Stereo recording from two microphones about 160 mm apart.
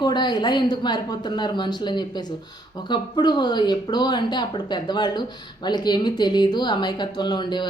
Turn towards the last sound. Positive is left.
turn(degrees=30)  # may be behind; listen again after turning